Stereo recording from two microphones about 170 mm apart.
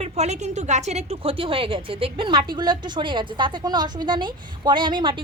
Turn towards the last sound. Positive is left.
turn(degrees=-30)  # may be behind; listen again after turning